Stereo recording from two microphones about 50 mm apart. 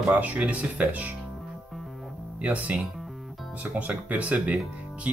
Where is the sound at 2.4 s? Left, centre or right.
Right.